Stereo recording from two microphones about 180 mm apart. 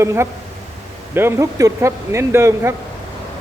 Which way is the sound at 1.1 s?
15° right (ahead or behind).